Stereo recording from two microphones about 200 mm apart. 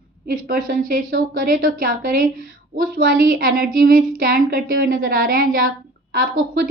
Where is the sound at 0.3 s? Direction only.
45° right (ahead or behind).